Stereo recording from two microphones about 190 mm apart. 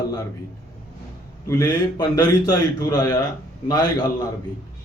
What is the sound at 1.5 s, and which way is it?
A man's voice, 20° left (ahead or behind).